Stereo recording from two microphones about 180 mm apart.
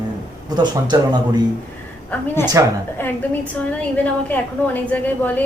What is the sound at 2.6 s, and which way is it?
Speech, 15° right (ahead or behind).